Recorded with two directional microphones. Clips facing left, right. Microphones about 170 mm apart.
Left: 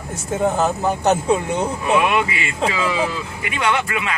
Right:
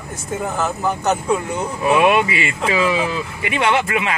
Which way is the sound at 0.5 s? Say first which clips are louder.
Left 2 dB; 25° left (ahead or behind).